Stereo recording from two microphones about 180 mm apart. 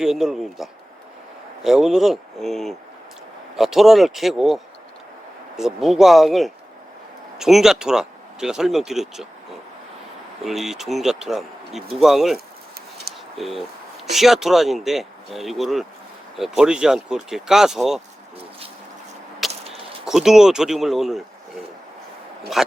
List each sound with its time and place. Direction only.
0.0 s speech: 5° right (ahead or behind)
10.4 s speech: centre (ahead or behind)
19.5 s a sound: 35° right (ahead or behind)
20.1 s speech: centre (ahead or behind)
22.6 s speech: centre (ahead or behind)